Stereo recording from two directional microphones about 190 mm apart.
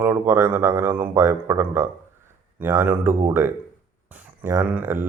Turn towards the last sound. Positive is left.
turn(degrees=-10)  # may be behind; listen again after turning